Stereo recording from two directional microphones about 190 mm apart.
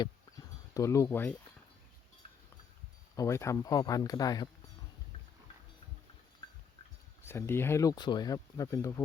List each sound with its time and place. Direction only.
0.0 s a sound: 20° left (ahead or behind)
3.2 s speech: 15° left (ahead or behind)
6.4 s goat: 25° left (ahead or behind)
7.3 s speech: 10° left (ahead or behind)